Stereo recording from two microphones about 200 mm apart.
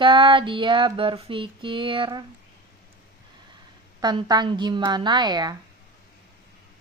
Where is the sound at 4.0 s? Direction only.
20° right (ahead or behind).